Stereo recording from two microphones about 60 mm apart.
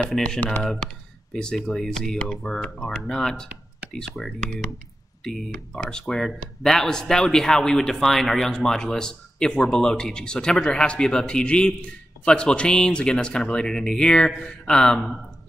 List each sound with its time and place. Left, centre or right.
0.4 s speech: left
1.3 s speech: centre
5.7 s speech: centre